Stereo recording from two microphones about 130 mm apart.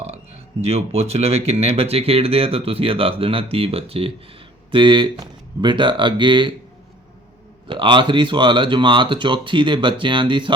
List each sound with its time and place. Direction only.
0.6 s speech: 55° right (ahead or behind); by 6.5 s 35° right (ahead or behind)
7.7 s speech: 40° right (ahead or behind)